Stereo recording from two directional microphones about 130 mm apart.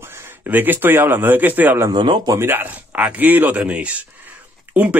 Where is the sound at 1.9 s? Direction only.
35° right (ahead or behind).